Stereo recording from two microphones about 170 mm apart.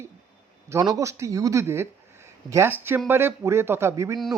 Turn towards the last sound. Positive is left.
turn(degrees=-15)  # may be behind; listen again after turning